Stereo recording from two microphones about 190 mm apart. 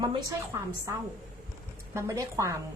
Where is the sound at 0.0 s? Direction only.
20° right (ahead or behind).